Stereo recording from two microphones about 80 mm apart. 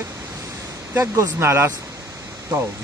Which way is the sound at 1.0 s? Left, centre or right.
Right.